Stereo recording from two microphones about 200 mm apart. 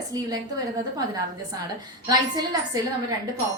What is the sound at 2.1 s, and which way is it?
Speech, 20° right (ahead or behind).